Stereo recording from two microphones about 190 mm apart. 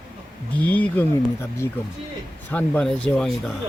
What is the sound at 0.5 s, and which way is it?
Speech, 10° left (ahead or behind).